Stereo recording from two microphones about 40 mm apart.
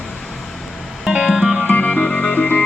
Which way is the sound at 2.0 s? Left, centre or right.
Centre.